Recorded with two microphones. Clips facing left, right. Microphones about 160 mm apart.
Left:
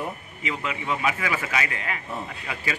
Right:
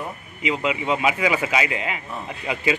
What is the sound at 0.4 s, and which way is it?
A man's voice, 15° right (ahead or behind).